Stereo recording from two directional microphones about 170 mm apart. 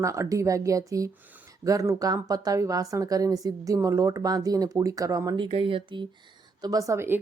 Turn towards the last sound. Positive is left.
turn(degrees=-15)  # may be behind; listen again after turning